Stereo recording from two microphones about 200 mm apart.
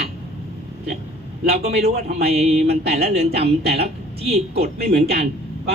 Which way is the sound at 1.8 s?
50° right (ahead or behind).